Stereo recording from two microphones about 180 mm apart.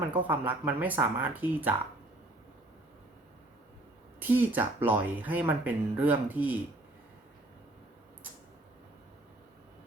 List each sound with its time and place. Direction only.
0.1 s speech: 10° right (ahead or behind)
4.2 s speech: 10° right (ahead or behind)